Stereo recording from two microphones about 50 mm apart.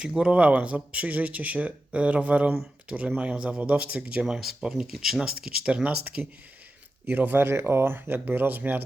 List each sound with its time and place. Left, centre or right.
0.1 s speech: centre
0.3 s speech: right
7.0 s speech: right
7.7 s speech: right